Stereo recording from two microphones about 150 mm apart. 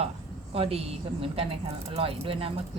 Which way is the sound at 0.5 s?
40° right (ahead or behind).